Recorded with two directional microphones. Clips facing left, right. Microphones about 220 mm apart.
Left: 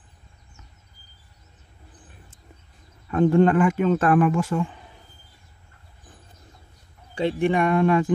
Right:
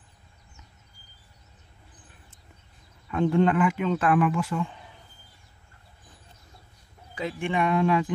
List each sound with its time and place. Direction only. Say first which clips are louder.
3.1 s speech: left 5 dB; 45° left (ahead or behind)
7.2 s speech: left 6 dB; 35° left (ahead or behind); by 8.1 s 50° left (ahead or behind)